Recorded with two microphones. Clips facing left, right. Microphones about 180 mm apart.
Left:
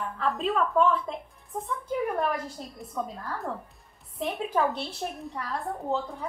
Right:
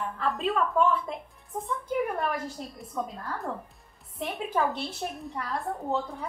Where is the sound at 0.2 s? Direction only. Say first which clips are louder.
Left 1 dB; centre (ahead or behind).